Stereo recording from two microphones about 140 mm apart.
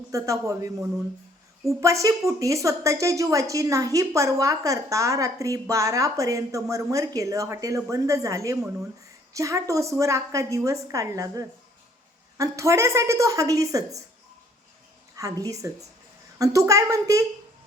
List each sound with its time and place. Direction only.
0.1 s a woman's voice: 25° right (ahead or behind)
15.2 s a woman's voice: 25° right (ahead or behind)